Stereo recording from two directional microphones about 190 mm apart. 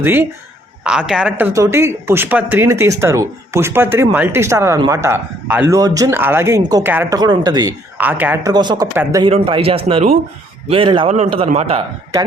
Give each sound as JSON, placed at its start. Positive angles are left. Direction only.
{"t": 0.0, "sound": "speech", "side_deg": -10}
{"t": 7.9, "sound": "speech", "side_deg": -10}
{"t": 8.5, "sound": "a man's voice", "side_deg": -20}